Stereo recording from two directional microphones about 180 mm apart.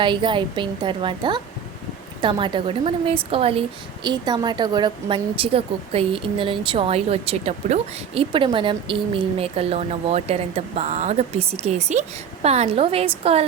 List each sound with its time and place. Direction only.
0.0 s a woman's voice: 25° right (ahead or behind)